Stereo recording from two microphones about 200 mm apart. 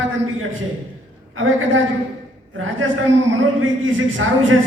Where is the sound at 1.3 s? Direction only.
75° right (ahead or behind).